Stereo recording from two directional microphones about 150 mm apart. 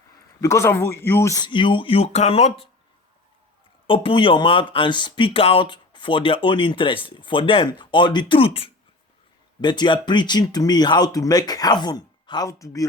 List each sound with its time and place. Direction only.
0.4 s speech: 20° left (ahead or behind); by 2.6 s 40° left (ahead or behind)
3.8 s speech: 35° left (ahead or behind)